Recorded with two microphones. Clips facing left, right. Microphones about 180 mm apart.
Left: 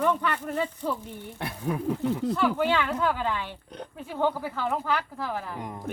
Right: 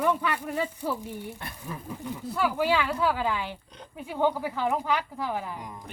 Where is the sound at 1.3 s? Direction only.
70° left (ahead or behind).